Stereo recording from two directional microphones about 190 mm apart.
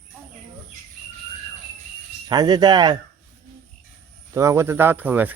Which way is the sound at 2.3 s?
20° right (ahead or behind).